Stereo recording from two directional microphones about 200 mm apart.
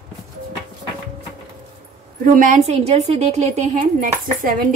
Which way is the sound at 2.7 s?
35° right (ahead or behind).